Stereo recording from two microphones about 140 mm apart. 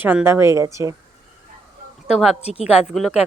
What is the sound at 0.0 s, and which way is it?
Speech, 10° right (ahead or behind).